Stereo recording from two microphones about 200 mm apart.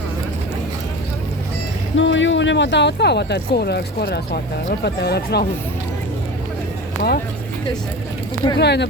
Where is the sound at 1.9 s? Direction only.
65° left (ahead or behind).